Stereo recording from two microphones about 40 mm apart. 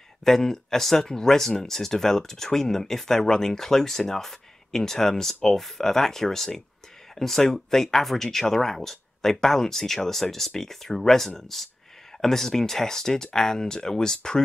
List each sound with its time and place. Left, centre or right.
0.2 s speech: centre